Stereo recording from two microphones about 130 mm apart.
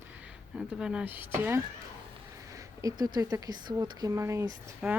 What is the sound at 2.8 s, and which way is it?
Speech, 30° right (ahead or behind).